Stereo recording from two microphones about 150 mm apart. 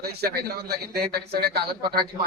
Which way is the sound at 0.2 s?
90° right.